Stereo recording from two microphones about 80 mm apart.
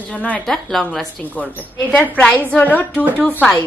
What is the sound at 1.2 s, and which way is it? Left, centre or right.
A woman's voice, left.